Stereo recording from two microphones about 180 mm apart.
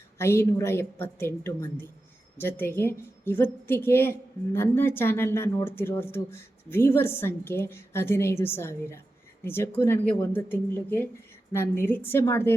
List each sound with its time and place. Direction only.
0.2 s a woman's voice: 15° left (ahead or behind)